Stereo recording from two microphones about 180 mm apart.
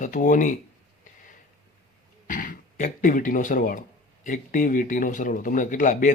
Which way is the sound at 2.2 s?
50° left (ahead or behind).